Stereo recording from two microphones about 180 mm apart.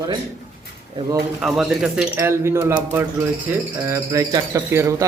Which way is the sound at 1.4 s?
Centre (ahead or behind).